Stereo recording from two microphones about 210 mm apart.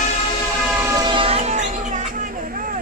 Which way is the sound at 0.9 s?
25° right (ahead or behind).